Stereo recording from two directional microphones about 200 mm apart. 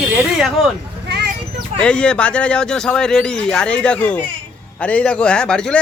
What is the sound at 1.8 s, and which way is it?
Speech, 5° left (ahead or behind).